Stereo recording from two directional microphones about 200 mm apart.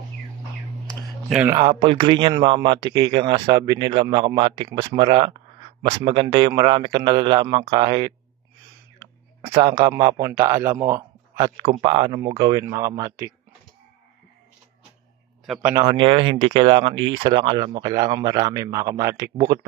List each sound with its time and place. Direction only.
0.8 s a sound: centre (ahead or behind)
1.5 s speech: 25° right (ahead or behind)
9.4 s speech: 25° right (ahead or behind)
15.4 s speech: centre (ahead or behind)
15.8 s speech: 25° right (ahead or behind)